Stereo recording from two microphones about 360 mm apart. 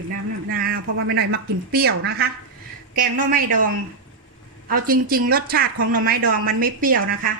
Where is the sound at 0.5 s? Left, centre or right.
Right.